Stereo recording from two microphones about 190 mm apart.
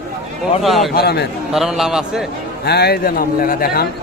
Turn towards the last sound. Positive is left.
turn(degrees=50)  # may be behind; listen again after turning